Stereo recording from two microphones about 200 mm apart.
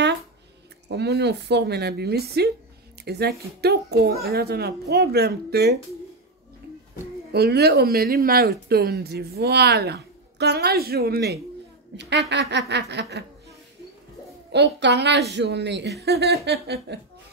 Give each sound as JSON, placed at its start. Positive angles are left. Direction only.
{"t": 0.8, "sound": "speech", "side_deg": -55}
{"t": 7.3, "sound": "speech", "side_deg": -55}
{"t": 14.5, "sound": "speech", "side_deg": -60}